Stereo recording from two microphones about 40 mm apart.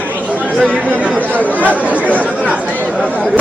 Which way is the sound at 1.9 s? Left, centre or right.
Right.